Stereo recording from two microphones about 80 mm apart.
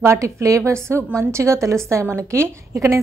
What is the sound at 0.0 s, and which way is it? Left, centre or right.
A woman's voice, right.